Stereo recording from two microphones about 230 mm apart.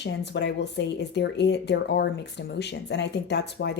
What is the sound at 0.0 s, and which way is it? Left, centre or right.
Speech, left.